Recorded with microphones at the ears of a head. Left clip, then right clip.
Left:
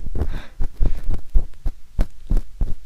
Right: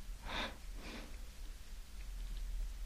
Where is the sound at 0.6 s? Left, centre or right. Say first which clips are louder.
Left 13 dB; left.